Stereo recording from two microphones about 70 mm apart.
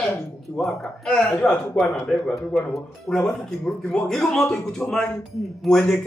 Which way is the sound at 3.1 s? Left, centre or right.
Centre.